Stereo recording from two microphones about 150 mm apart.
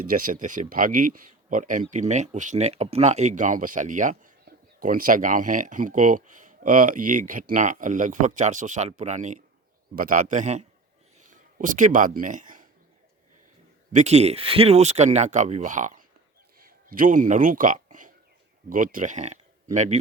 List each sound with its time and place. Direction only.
0.1 s speech: 65° right (ahead or behind)
1.9 s speech: 55° right (ahead or behind)
9.9 s speech: 65° right (ahead or behind); by 10.7 s 50° right (ahead or behind)
11.3 s speech: 60° right (ahead or behind)
13.9 s speech: 45° right (ahead or behind)